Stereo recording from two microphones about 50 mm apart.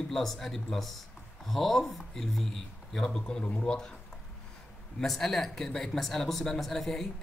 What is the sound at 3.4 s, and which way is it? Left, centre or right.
Speech, left.